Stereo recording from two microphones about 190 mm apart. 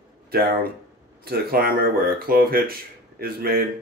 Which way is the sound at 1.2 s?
50° right (ahead or behind).